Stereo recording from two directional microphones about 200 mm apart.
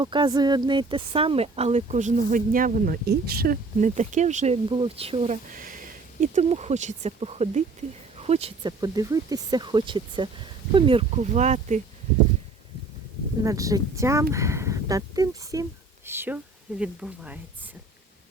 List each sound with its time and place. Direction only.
0.0 s speech: 20° right (ahead or behind)
13.4 s speech: 15° right (ahead or behind)